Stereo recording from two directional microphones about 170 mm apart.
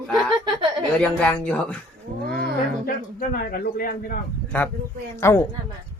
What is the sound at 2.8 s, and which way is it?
Speech, 60° left (ahead or behind).